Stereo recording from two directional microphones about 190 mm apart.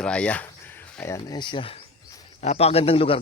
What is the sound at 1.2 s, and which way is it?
A man's voice, 25° left (ahead or behind).